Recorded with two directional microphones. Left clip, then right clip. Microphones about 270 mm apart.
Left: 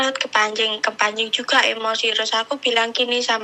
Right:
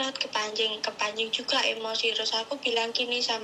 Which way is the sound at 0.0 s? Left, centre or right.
Left.